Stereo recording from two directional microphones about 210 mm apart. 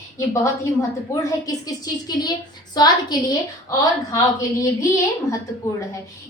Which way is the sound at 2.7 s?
20° left (ahead or behind).